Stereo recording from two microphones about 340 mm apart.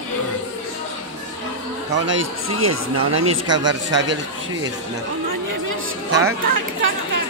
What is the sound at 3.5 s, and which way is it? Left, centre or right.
Speech, right.